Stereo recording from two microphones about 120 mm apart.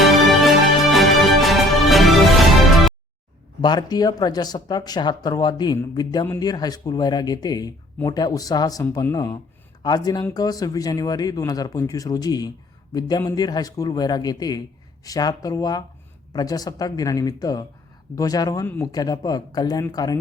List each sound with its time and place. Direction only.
0.0 s music: centre (ahead or behind)
3.6 s speech: 35° left (ahead or behind)
18.6 s speech: 20° left (ahead or behind)
18.9 s speech: 35° left (ahead or behind)